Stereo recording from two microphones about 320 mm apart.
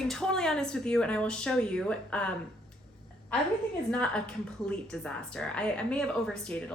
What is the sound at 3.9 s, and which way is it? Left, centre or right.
Speech, centre.